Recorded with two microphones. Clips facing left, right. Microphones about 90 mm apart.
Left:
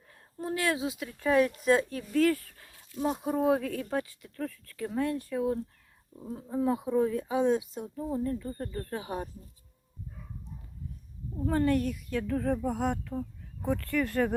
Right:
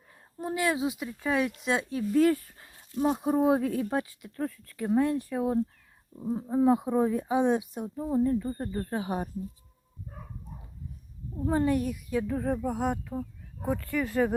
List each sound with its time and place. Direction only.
0.3 s speech: 15° right (ahead or behind)
2.1 s speech: 20° right (ahead or behind)
11.4 s speech: 15° right (ahead or behind)